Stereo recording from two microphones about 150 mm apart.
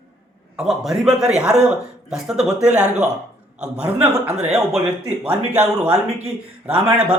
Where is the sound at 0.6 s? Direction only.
Centre (ahead or behind).